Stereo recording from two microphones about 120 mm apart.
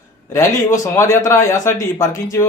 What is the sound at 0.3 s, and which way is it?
A man's voice, 25° left (ahead or behind).